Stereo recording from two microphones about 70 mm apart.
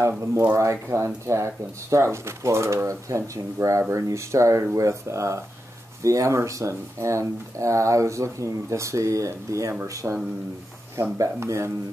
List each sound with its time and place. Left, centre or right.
0.6 s speech: right